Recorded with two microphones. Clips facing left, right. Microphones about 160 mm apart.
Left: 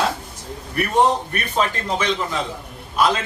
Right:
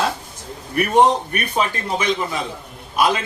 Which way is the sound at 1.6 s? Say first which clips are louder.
Left 1 dB; 10° right (ahead or behind).